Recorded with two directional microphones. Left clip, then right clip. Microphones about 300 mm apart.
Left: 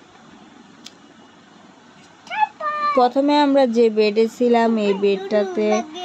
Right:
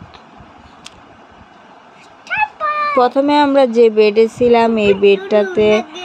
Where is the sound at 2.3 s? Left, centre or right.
Right.